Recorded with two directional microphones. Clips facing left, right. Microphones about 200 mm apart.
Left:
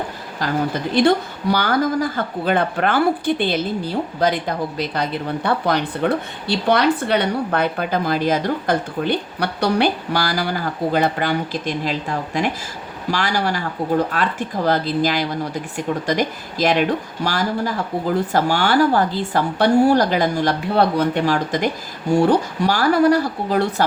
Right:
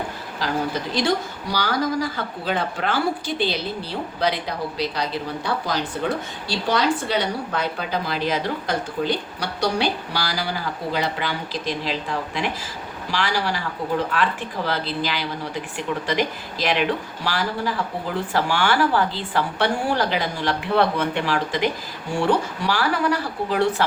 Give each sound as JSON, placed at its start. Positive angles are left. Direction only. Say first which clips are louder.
{"t": 0.9, "sound": "a woman's voice", "louder": "left 8 dB", "side_deg": 55}